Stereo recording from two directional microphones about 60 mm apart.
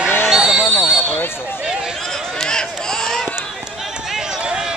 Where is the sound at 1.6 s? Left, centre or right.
Centre.